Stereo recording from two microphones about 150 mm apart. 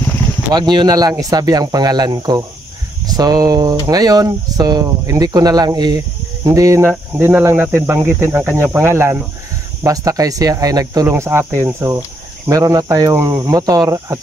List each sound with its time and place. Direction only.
0.5 s speech: 30° right (ahead or behind)